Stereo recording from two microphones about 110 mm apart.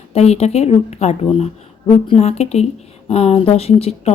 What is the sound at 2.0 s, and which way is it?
Speech, 70° left (ahead or behind).